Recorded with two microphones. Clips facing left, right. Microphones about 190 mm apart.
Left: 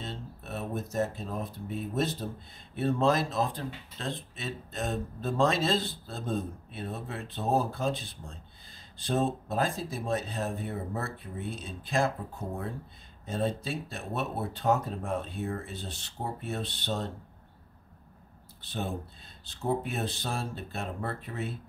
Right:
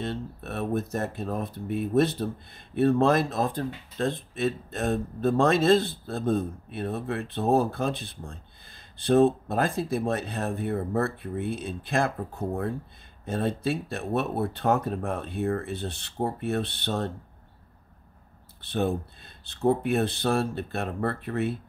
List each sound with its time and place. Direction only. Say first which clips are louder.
0.0 s speech: right 8 dB; 60° right (ahead or behind)
13.2 s speech: right 4 dB; 60° right (ahead or behind)
18.6 s speech: right 8 dB; 65° right (ahead or behind)